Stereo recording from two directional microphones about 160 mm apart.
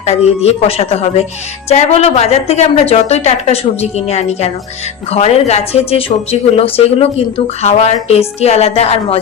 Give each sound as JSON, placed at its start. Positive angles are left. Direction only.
{"t": 0.0, "sound": "a woman's voice", "side_deg": 40}